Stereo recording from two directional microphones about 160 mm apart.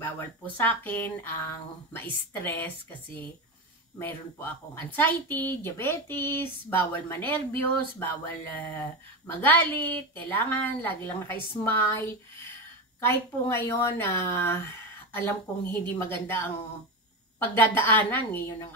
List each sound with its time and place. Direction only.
0.0 s speech: 10° left (ahead or behind)
4.0 s speech: 10° left (ahead or behind)
17.6 s speech: 10° left (ahead or behind)